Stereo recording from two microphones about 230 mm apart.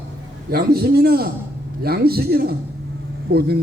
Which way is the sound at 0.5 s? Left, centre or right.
Right.